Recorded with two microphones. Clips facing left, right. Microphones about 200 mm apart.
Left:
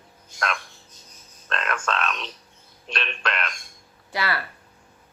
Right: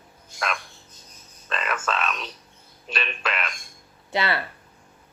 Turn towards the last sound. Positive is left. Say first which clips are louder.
# right 2 dB
turn(degrees=-25)  # may be behind; listen again after turning